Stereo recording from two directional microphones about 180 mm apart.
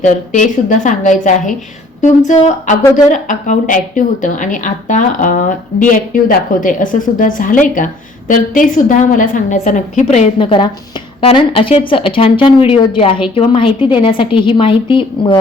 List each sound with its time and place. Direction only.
0.0 s a woman's voice: 45° left (ahead or behind); by 15.4 s 25° left (ahead or behind)